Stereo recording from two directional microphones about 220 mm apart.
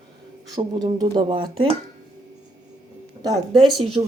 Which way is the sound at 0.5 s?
20° right (ahead or behind).